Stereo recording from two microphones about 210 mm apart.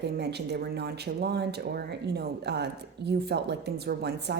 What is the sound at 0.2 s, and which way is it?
Speech, 50° right (ahead or behind).